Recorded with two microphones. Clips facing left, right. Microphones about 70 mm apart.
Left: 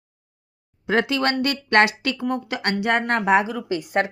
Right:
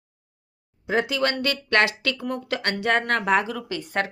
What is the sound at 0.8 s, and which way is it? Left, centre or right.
Speech, left.